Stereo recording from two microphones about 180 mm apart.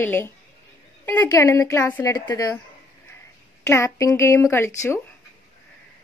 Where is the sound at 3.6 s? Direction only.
15° left (ahead or behind).